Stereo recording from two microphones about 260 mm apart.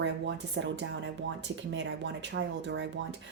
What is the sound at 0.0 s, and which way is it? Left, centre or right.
Speech, right.